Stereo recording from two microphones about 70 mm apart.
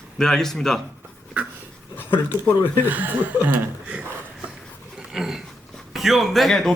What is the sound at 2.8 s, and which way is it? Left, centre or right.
Speech, right.